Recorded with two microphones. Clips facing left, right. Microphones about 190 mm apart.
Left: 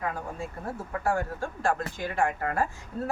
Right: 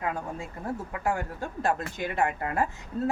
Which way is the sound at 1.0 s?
20° right (ahead or behind).